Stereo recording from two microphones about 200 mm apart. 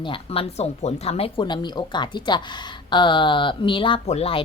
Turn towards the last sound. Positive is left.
turn(degrees=30)  # may be behind; listen again after turning